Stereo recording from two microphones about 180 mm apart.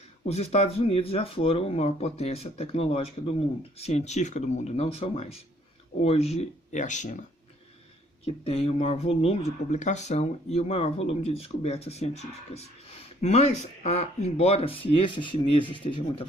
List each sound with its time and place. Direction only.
0.3 s speech: 35° left (ahead or behind)